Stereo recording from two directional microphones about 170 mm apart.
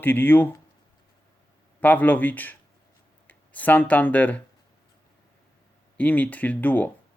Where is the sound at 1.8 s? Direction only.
10° left (ahead or behind).